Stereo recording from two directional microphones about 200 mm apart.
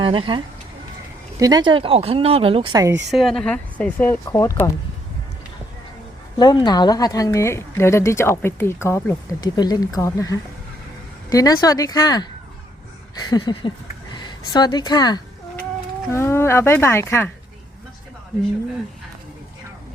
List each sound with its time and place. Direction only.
0.0 s speech: 25° right (ahead or behind)
3.1 s a woman's voice: centre (ahead or behind)
6.4 s a woman's voice: 20° left (ahead or behind)
13.3 s a woman's voice: 20° left (ahead or behind)